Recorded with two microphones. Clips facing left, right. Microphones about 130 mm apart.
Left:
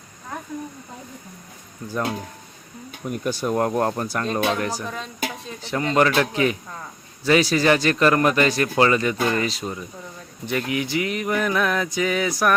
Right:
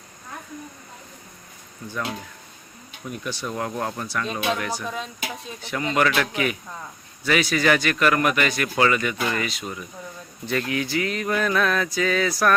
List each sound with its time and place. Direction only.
3.1 s a man's voice: 45° left (ahead or behind)
4.8 s speech: 5° right (ahead or behind)
5.6 s a man's voice: 35° left (ahead or behind)
10.4 s speech: 15° left (ahead or behind)